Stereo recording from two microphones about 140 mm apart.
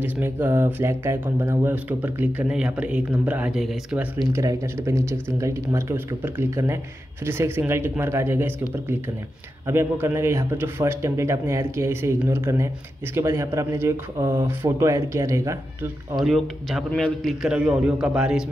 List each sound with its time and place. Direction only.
0.0 s a man's voice: 15° right (ahead or behind)
4.3 s speech: 20° right (ahead or behind)
16.2 s a man's voice: centre (ahead or behind)